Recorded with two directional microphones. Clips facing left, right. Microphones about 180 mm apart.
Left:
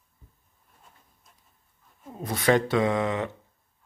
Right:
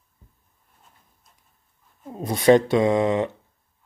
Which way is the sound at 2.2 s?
20° right (ahead or behind).